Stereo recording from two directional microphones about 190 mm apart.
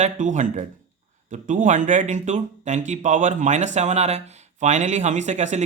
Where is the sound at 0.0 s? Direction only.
40° right (ahead or behind).